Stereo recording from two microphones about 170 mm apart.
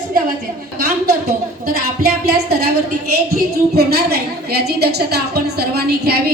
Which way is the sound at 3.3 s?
65° right (ahead or behind).